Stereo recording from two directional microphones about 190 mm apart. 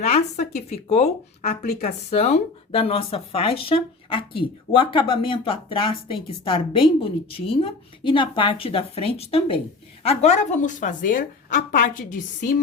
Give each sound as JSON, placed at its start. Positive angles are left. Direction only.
{"t": 0.0, "sound": "a woman's voice", "side_deg": 35}